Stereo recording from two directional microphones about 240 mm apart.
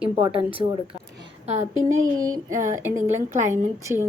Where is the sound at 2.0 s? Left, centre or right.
Centre.